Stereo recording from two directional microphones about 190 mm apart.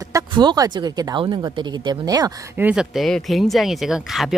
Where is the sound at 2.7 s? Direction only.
Centre (ahead or behind).